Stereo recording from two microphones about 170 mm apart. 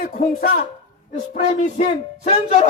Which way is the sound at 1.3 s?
45° left (ahead or behind).